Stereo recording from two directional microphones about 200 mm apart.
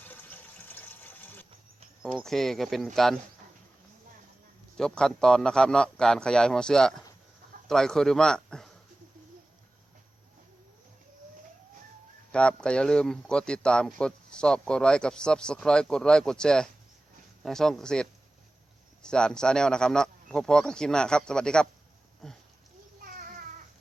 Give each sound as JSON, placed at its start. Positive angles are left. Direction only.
{"t": 0.0, "sound": "water", "side_deg": 10}
{"t": 2.0, "sound": "speech", "side_deg": 0}
{"t": 4.8, "sound": "a man's voice", "side_deg": 5}
{"t": 12.3, "sound": "speech", "side_deg": 5}
{"t": 23.0, "sound": "a sound", "side_deg": -45}